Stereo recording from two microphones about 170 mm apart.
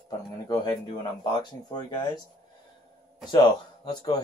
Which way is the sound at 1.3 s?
25° left (ahead or behind).